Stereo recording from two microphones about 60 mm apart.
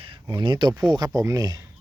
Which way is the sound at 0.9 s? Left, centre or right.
Right.